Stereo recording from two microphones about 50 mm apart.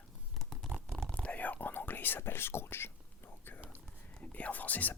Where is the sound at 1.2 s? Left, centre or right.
Left.